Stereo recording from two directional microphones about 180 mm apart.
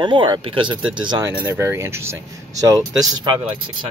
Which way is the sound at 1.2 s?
15° right (ahead or behind).